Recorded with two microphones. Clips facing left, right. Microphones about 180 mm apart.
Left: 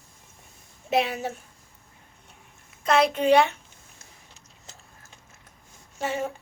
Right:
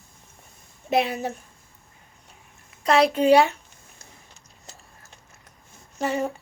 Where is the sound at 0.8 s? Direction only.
Centre (ahead or behind).